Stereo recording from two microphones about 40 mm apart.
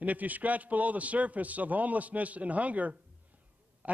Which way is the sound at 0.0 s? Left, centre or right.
Right.